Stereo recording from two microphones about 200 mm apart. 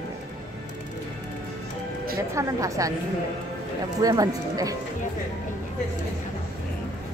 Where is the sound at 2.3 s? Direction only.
15° right (ahead or behind).